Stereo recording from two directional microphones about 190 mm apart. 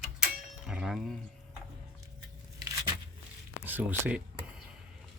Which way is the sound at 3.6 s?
10° right (ahead or behind).